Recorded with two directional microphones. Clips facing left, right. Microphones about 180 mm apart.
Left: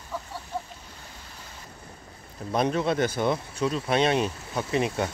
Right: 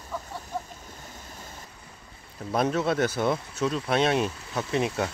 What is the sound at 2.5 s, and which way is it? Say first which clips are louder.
Speech: even; centre (ahead or behind).